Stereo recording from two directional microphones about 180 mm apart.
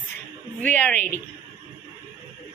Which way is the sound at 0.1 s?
10° left (ahead or behind).